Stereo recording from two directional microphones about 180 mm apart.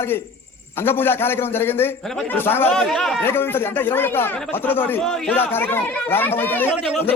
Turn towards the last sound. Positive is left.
turn(degrees=10)  # may be behind; listen again after turning